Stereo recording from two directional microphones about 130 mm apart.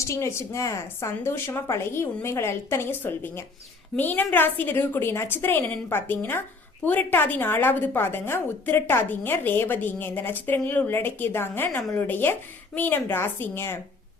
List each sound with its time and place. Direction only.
0.1 s a woman's voice: 20° left (ahead or behind)